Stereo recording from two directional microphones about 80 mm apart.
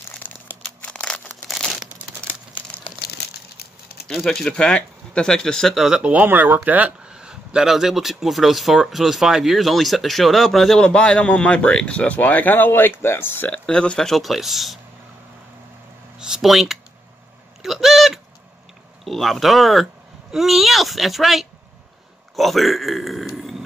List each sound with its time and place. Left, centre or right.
0.2 s crumpling: left
1.5 s crumpling: centre
2.9 s crumpling: left
4.1 s speech: centre
5.9 s speech: centre
6.2 s speech: right
7.2 s speech: centre
10.8 s speech: centre
13.5 s speech: centre
16.2 s a sound: centre
19.0 s speech: centre
22.3 s a sound: centre